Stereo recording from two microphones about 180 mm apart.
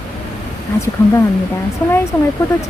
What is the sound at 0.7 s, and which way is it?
Speech, 10° left (ahead or behind).